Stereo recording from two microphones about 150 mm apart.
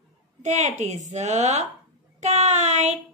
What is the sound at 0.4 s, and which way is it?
A woman's voice, 50° right (ahead or behind).